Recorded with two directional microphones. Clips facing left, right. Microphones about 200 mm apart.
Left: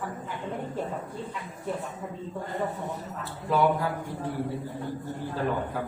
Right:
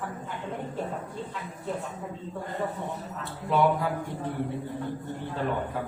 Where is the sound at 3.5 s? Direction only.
Centre (ahead or behind).